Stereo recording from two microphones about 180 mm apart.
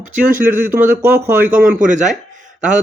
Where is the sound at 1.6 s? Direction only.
45° right (ahead or behind).